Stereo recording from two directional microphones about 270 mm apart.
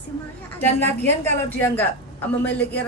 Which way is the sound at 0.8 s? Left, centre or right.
Centre.